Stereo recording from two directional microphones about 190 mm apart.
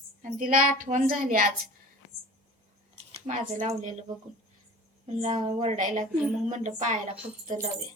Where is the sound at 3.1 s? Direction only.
40° right (ahead or behind).